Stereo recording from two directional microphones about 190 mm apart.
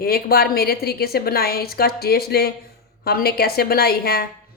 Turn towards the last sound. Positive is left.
turn(degrees=55)  # may be behind; listen again after turning